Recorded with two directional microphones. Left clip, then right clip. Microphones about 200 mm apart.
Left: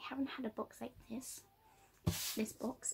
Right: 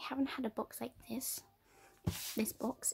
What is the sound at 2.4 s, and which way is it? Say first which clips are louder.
Speech: right 3 dB; 35° right (ahead or behind).